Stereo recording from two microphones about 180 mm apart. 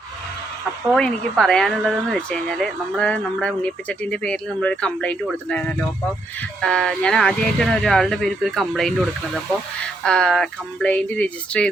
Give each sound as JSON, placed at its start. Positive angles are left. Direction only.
{"t": 0.9, "sound": "speech", "side_deg": 5}